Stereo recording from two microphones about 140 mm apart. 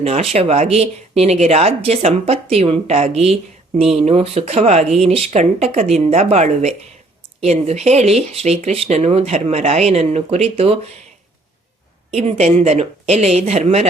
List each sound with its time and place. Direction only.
0.0 s speech: 45° right (ahead or behind)
12.1 s speech: 50° right (ahead or behind)